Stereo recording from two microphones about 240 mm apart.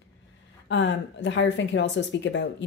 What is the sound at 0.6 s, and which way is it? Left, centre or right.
Speech, left.